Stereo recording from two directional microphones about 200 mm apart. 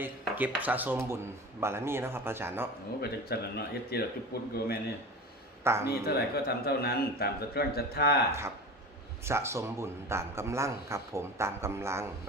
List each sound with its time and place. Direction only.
0.0 s a man's voice: 10° right (ahead or behind)
3.0 s a man's voice: 50° left (ahead or behind)
5.6 s a man's voice: 10° right (ahead or behind)
5.9 s a man's voice: 50° left (ahead or behind)
8.3 s a man's voice: 15° right (ahead or behind)